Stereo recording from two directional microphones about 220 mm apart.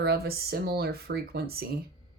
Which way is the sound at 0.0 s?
45° right (ahead or behind).